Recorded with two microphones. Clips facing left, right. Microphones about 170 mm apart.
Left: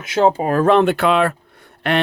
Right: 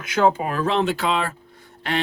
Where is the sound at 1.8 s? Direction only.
65° left (ahead or behind).